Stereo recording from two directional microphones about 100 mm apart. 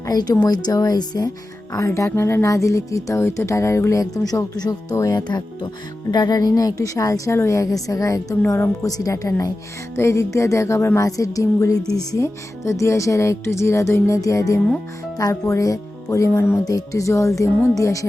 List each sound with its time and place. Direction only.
0.0 s speech: 40° left (ahead or behind)
1.7 s speech: 30° left (ahead or behind)
8.5 s speech: 25° left (ahead or behind)
8.9 s speech: 40° left (ahead or behind)